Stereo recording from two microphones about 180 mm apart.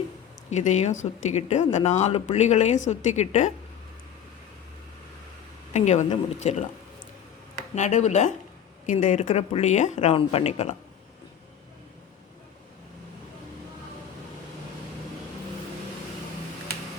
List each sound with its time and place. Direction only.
0.5 s speech: 40° left (ahead or behind)
5.7 s speech: 40° left (ahead or behind)
7.8 s speech: 40° left (ahead or behind)